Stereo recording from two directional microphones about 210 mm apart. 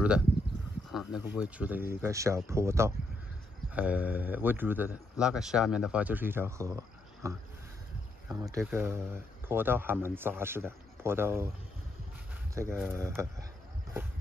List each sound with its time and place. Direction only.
0.9 s a man's voice: 5° right (ahead or behind)
12.5 s a man's voice: 10° right (ahead or behind)